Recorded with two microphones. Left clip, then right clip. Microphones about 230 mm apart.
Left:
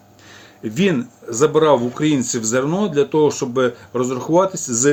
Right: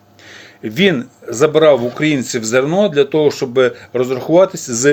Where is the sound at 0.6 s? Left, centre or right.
Centre.